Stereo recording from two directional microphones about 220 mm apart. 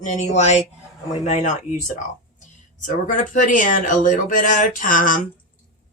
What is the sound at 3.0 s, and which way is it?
Speech, 35° left (ahead or behind).